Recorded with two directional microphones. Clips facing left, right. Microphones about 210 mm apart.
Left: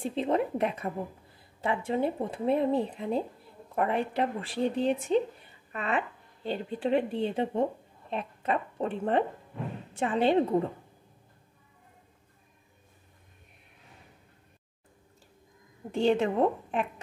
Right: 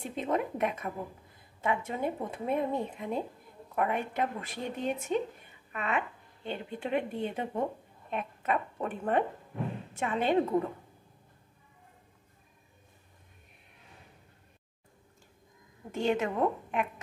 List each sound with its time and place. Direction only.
0.0 s a woman's voice: 30° left (ahead or behind)
15.9 s a woman's voice: 30° left (ahead or behind)